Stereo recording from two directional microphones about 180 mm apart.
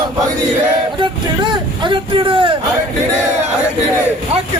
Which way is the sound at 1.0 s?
25° right (ahead or behind).